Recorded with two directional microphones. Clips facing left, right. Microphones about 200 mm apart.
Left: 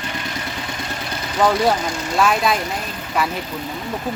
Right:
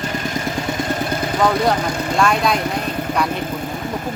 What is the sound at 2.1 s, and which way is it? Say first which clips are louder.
Speech: even; 5° left (ahead or behind).